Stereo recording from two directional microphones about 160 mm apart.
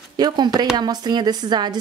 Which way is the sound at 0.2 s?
25° right (ahead or behind).